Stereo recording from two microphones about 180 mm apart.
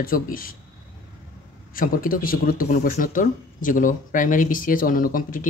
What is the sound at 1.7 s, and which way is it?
Speech, 50° left (ahead or behind).